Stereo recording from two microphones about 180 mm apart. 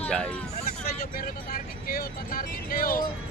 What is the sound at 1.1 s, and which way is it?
Speech, 55° left (ahead or behind).